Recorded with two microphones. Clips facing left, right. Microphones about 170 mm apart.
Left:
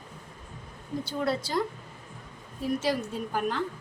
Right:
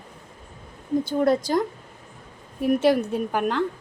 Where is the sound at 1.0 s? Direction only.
50° right (ahead or behind).